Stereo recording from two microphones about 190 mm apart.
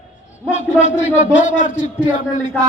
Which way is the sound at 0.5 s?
40° left (ahead or behind).